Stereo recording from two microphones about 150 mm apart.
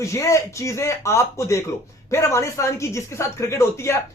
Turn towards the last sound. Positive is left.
turn(degrees=20)  # may be behind; listen again after turning